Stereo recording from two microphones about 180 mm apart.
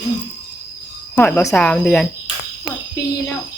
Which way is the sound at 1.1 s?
15° left (ahead or behind).